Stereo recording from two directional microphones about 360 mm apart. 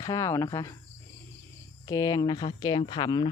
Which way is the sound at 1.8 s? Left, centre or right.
Centre.